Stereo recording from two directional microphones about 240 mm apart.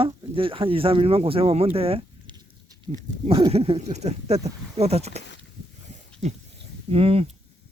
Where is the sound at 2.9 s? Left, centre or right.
Right.